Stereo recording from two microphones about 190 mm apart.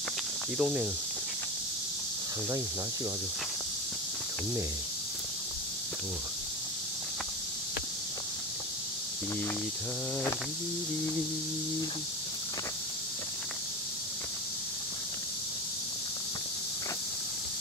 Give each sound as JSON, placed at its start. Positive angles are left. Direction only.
{"t": 0.6, "sound": "speech", "side_deg": -5}